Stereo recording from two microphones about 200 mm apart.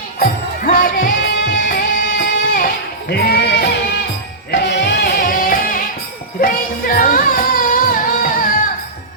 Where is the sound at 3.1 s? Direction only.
55° left (ahead or behind).